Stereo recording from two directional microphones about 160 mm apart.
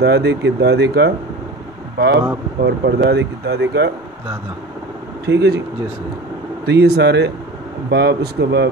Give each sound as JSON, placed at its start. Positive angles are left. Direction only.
{"t": 0.0, "sound": "speech", "side_deg": -90}
{"t": 5.2, "sound": "speech", "side_deg": -90}
{"t": 6.6, "sound": "speech", "side_deg": -90}